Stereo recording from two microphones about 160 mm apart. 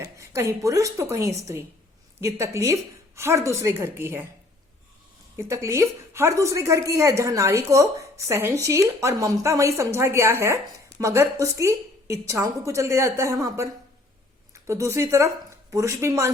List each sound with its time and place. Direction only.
0.0 s a woman's voice: 20° right (ahead or behind)
5.4 s a woman's voice: 15° right (ahead or behind)